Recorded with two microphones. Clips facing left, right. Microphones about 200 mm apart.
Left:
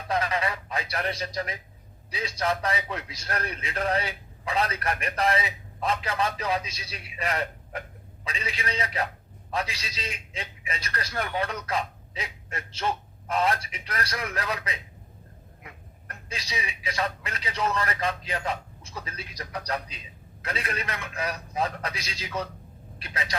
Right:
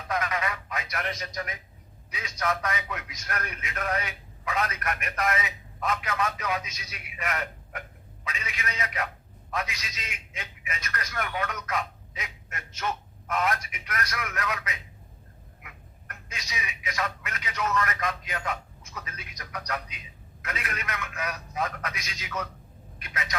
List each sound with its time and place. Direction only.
0.1 s a man's voice: 30° left (ahead or behind)